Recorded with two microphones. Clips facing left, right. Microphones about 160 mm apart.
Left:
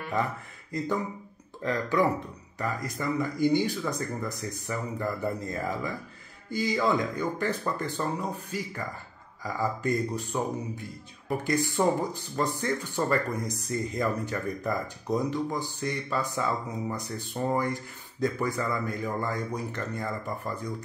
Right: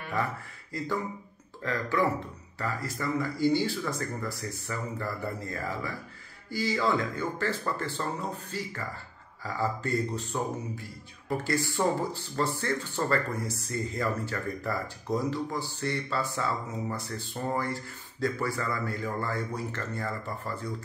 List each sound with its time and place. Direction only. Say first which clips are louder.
0.1 s a man's voice: left 2 dB; 20° left (ahead or behind)